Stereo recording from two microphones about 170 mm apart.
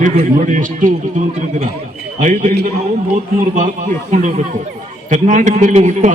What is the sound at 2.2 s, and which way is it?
A man's voice, 50° right (ahead or behind).